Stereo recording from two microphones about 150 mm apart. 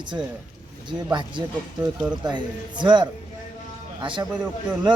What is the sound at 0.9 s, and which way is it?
A woman's voice, 30° right (ahead or behind).